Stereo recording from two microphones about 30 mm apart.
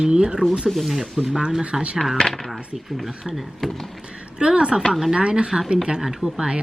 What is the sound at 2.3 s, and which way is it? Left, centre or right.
Speech, centre.